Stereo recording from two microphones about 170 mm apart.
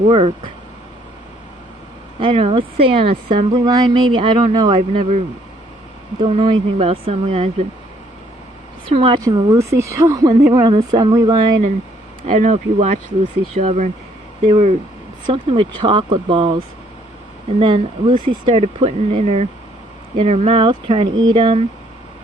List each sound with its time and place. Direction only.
0.0 s speech: 35° right (ahead or behind)
2.1 s a woman's voice: 35° right (ahead or behind)
6.1 s speech: 30° right (ahead or behind)
8.9 s speech: 35° right (ahead or behind)
9.2 s a woman's voice: 20° right (ahead or behind)
12.3 s a woman's voice: 45° right (ahead or behind)